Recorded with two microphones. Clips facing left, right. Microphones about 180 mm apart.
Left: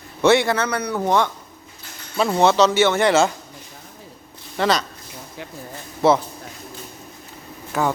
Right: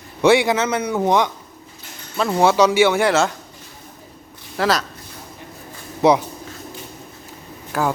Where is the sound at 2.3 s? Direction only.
10° right (ahead or behind).